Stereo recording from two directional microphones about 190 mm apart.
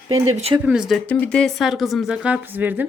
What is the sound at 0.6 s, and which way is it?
A woman's voice, 5° right (ahead or behind).